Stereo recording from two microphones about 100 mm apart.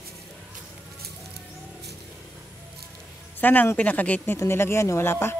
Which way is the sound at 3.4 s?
20° left (ahead or behind).